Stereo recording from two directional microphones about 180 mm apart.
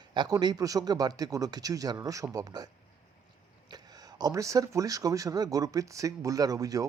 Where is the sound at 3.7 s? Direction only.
20° right (ahead or behind).